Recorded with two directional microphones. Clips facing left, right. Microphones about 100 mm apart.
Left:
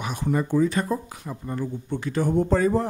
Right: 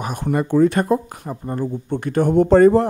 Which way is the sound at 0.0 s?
55° right (ahead or behind).